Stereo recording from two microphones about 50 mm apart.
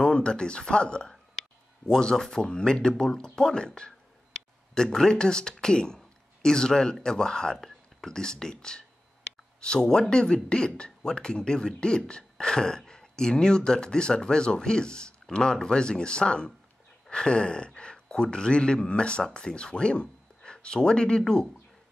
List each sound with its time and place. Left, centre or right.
0.0 s speech: centre